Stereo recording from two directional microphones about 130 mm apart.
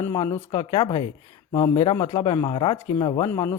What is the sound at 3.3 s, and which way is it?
Speech, 20° left (ahead or behind).